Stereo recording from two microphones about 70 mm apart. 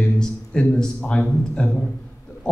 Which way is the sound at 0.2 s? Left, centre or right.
Centre.